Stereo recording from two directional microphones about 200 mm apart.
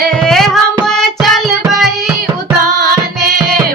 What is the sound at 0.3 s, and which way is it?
Music, centre (ahead or behind).